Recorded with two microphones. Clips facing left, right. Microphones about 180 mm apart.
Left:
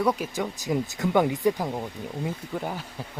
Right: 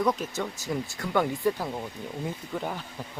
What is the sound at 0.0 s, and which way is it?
Speech, 10° left (ahead or behind).